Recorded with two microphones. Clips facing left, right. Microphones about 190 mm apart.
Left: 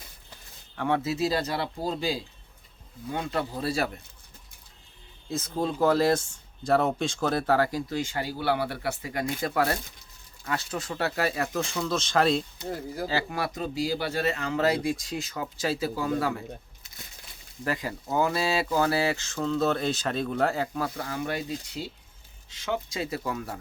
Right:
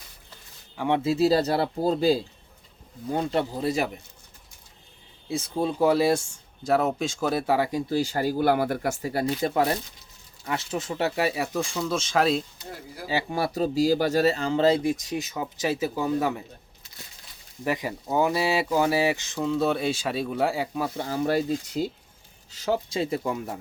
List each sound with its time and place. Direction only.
0.9 s speech: 20° right (ahead or behind)
1.1 s speech: 35° right (ahead or behind)
3.5 s speech: 20° right (ahead or behind)
5.3 s speech: 10° right (ahead or behind)
7.9 s speech: 40° right (ahead or behind)
9.4 s speech: 20° right (ahead or behind); by 12.4 s 5° right (ahead or behind)
13.3 s speech: 30° right (ahead or behind)
17.6 s speech: 15° right (ahead or behind)
21.0 s speech: 35° right (ahead or behind)